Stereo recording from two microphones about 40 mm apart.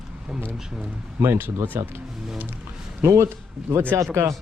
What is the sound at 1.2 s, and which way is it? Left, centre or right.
Speech, right.